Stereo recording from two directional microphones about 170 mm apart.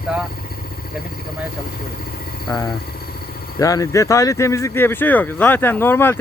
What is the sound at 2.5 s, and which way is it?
Speech, 15° left (ahead or behind).